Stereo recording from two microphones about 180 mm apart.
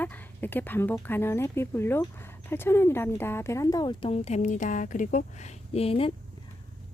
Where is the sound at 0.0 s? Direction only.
10° left (ahead or behind); by 6.1 s 30° left (ahead or behind).